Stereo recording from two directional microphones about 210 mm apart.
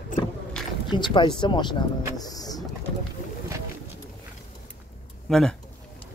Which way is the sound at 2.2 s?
20° left (ahead or behind).